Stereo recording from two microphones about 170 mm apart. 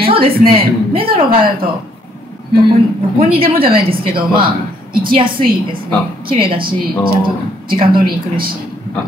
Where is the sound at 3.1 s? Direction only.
35° right (ahead or behind).